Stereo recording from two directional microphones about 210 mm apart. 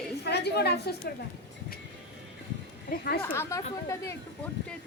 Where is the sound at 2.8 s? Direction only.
50° left (ahead or behind).